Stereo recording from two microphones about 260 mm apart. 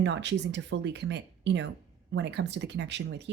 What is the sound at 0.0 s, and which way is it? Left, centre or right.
A woman's voice, right.